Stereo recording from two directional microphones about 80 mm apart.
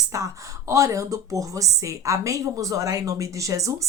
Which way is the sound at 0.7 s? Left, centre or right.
Right.